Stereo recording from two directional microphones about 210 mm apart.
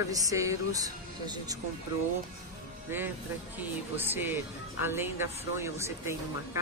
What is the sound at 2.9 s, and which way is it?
A woman's voice, 10° right (ahead or behind).